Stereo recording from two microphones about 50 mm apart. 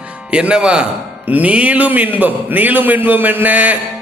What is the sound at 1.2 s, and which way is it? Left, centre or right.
A man's voice, right.